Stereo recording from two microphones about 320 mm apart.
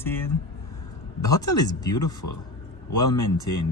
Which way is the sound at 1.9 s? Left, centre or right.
Left.